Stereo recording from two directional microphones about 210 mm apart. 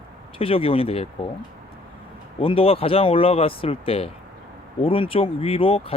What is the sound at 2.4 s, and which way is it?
Speech, 25° left (ahead or behind).